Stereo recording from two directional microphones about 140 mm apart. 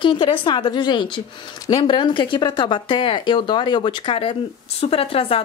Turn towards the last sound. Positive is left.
turn(degrees=45)  # may be behind; listen again after turning